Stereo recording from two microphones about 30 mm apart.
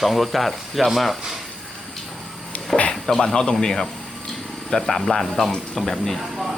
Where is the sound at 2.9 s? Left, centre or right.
Centre.